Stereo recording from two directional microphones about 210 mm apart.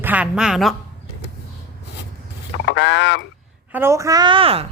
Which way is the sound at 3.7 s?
10° right (ahead or behind).